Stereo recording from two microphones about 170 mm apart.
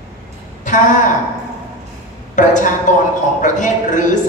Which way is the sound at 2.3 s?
45° left (ahead or behind).